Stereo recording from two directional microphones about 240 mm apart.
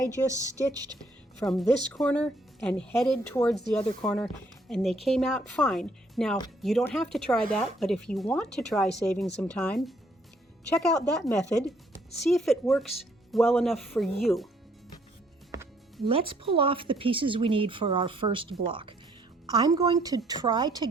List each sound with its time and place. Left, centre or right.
0.1 s a woman's voice: centre
1.4 s speech: centre
15.5 s music: centre
16.0 s a woman's voice: right